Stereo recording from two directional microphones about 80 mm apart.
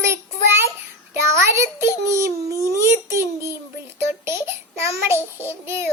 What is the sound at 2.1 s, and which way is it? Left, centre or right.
A child's voice, right.